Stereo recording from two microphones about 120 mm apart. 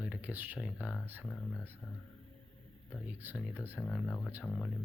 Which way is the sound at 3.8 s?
10° left (ahead or behind).